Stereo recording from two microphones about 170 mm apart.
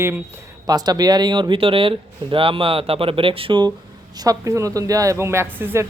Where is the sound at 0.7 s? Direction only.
25° right (ahead or behind).